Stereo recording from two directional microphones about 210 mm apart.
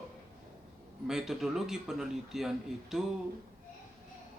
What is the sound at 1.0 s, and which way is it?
Speech, centre (ahead or behind).